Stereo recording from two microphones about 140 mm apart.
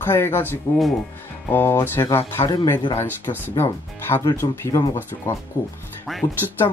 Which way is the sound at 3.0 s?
15° right (ahead or behind).